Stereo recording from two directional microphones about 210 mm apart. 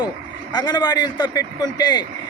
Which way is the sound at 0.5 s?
20° left (ahead or behind).